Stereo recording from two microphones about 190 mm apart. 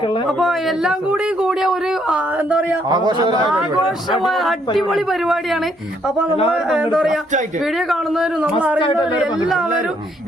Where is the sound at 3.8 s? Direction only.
Centre (ahead or behind).